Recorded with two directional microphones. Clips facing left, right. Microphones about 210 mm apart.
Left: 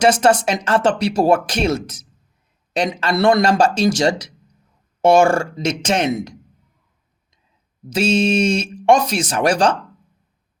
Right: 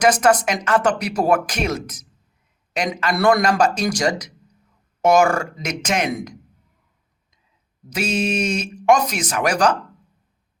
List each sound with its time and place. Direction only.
0.0 s speech: 30° left (ahead or behind)
7.9 s speech: 30° left (ahead or behind)